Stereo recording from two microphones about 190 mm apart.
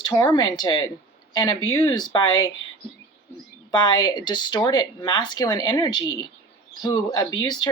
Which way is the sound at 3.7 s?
20° left (ahead or behind).